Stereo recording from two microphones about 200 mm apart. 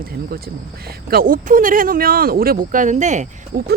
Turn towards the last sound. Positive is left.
turn(degrees=-40)  # may be behind; listen again after turning